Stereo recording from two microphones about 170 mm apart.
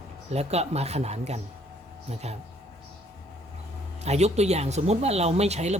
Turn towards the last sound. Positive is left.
turn(degrees=-40)  # may be behind; listen again after turning